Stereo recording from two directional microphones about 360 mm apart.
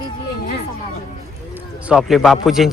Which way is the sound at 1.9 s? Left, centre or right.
Centre.